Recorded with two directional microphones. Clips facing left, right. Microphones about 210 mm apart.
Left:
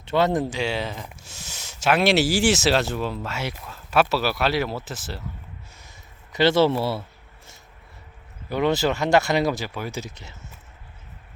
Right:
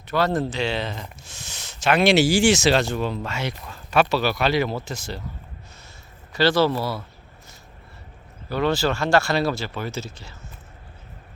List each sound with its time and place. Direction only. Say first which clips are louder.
0.0 s speech: left 1 dB; 25° left (ahead or behind); by 5.2 s 5° left (ahead or behind)
6.3 s speech: left 1 dB; 20° left (ahead or behind)
8.4 s speech: even; 20° left (ahead or behind)